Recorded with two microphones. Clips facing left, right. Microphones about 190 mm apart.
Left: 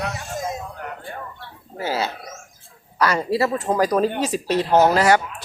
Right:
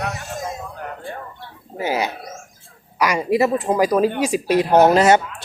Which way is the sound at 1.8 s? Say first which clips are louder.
Right 2 dB; 15° right (ahead or behind).